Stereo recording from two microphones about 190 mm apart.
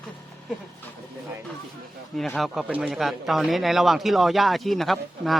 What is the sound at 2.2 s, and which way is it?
Speech, centre (ahead or behind).